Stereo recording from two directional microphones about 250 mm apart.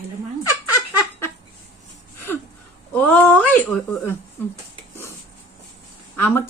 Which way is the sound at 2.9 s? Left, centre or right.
Centre.